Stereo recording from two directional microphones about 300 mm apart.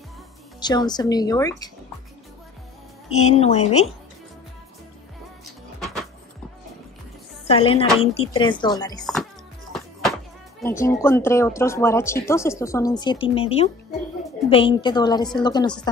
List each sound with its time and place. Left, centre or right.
0.6 s speech: centre
3.1 s speech: left
5.8 s music: centre
7.4 s speech: centre
9.0 s music: centre
10.6 s speech: centre